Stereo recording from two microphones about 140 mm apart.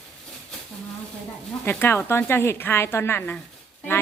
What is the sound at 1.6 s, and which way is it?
A woman's voice, 15° left (ahead or behind).